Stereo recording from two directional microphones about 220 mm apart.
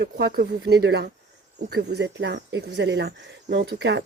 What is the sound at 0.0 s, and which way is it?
Speech, 45° right (ahead or behind).